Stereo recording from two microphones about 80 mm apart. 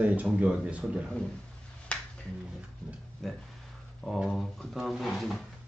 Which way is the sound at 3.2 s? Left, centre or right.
Centre.